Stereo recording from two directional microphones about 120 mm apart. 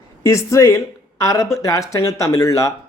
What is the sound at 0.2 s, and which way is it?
Speech, 25° left (ahead or behind).